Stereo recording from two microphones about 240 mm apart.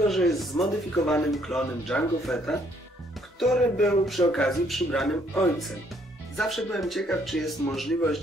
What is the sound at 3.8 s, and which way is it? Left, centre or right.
Speech, centre.